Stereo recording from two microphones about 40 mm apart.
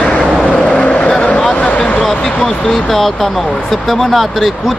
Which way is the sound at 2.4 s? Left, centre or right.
Centre.